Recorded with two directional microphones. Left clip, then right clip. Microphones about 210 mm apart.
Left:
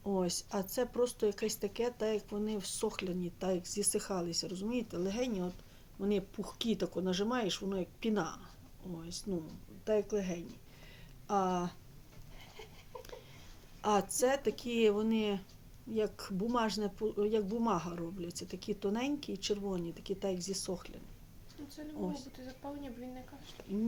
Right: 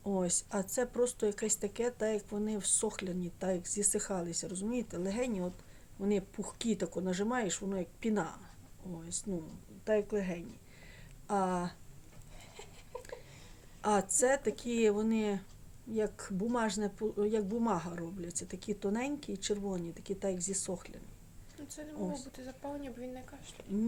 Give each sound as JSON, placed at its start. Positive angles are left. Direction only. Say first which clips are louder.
{"t": 0.0, "sound": "speech", "louder": "even", "side_deg": -5}
{"t": 13.8, "sound": "speech", "louder": "right 1 dB", "side_deg": -5}
{"t": 22.7, "sound": "speech", "louder": "right 3 dB", "side_deg": -55}